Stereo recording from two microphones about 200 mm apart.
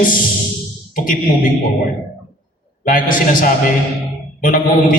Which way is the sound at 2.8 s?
45° left (ahead or behind).